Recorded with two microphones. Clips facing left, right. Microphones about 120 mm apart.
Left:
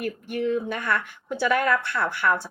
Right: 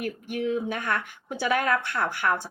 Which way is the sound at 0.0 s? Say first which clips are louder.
Left 2 dB; 50° left (ahead or behind).